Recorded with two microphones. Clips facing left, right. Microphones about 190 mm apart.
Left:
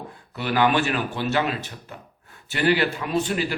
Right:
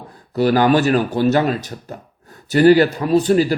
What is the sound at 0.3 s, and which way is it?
A man's voice, 40° right (ahead or behind).